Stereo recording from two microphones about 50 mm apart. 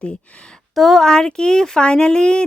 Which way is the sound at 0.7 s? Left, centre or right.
Centre.